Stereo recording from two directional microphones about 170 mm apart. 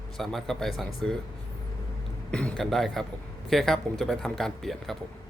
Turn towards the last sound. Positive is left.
turn(degrees=0)  # may be behind; listen again after turning